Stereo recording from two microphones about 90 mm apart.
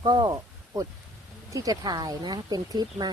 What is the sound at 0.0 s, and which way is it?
Speech, 50° right (ahead or behind).